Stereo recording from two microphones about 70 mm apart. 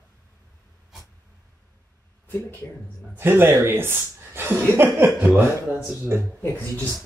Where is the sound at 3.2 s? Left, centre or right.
Right.